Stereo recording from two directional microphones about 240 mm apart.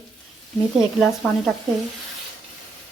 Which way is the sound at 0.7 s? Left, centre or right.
Centre.